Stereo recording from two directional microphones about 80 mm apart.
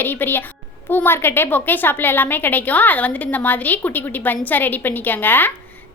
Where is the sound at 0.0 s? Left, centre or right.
Left.